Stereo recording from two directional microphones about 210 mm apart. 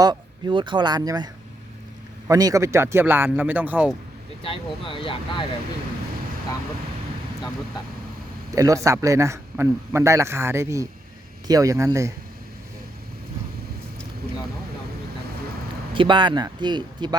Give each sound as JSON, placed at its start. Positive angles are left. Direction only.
{"t": 0.0, "sound": "a man's voice", "side_deg": -20}
{"t": 4.4, "sound": "speech", "side_deg": 25}
{"t": 8.5, "sound": "a man's voice", "side_deg": -15}
{"t": 16.0, "sound": "speech", "side_deg": -20}